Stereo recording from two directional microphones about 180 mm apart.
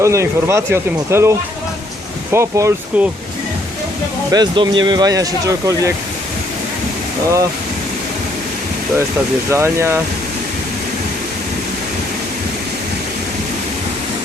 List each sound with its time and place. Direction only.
0.0 s speech: 15° right (ahead or behind)
2.3 s speech: 15° right (ahead or behind)
4.3 s speech: 25° right (ahead or behind)
9.5 s speech: 15° right (ahead or behind)